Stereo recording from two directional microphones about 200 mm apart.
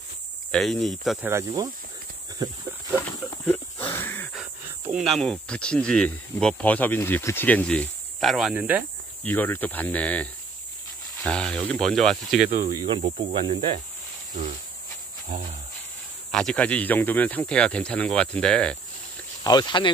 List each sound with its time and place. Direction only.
0.5 s speech: centre (ahead or behind)
1.3 s speech: 20° right (ahead or behind)
3.0 s a sound: 10° left (ahead or behind)
5.0 s speech: centre (ahead or behind)
9.2 s speech: 10° left (ahead or behind)
12.4 s speech: 45° right (ahead or behind)
12.7 s speech: 25° right (ahead or behind)
16.3 s speech: 5° left (ahead or behind)
19.4 s speech: 20° left (ahead or behind)